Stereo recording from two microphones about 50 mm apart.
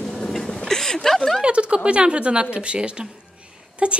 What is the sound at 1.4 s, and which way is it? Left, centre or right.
Speech, right.